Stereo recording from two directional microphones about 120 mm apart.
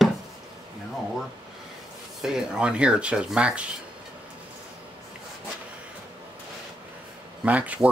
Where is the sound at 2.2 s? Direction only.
5° right (ahead or behind).